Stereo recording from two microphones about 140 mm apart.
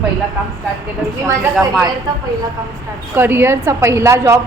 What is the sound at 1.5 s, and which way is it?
Speech, centre (ahead or behind).